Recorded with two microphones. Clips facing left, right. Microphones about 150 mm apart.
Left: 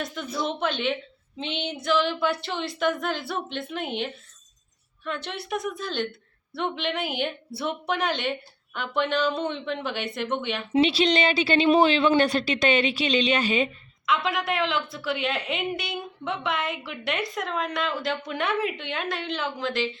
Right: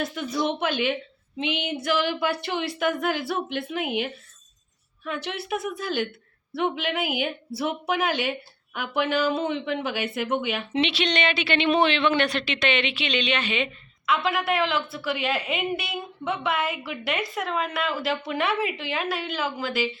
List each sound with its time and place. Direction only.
0.0 s a woman's voice: 5° right (ahead or behind)
10.7 s a woman's voice: 35° left (ahead or behind)
14.1 s a woman's voice: centre (ahead or behind)